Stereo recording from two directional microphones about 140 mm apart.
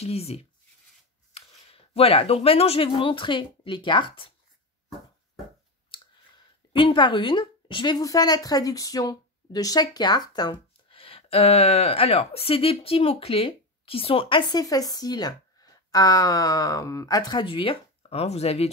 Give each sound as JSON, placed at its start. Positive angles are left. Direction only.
{"t": 0.0, "sound": "speech", "side_deg": 45}
{"t": 5.9, "sound": "speech", "side_deg": 35}
{"t": 14.6, "sound": "speech", "side_deg": 25}